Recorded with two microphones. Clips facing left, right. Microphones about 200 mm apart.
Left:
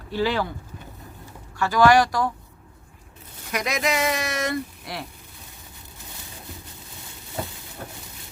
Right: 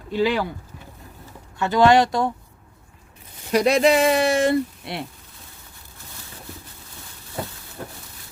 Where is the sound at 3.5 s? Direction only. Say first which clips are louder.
Right 9 dB; 30° right (ahead or behind).